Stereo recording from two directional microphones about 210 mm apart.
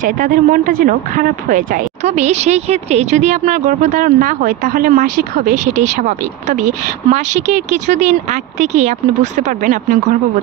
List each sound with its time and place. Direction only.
0.0 s speech: 40° right (ahead or behind)